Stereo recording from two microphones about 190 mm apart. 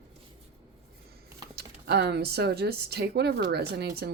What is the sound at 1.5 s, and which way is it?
Speech, 60° right (ahead or behind).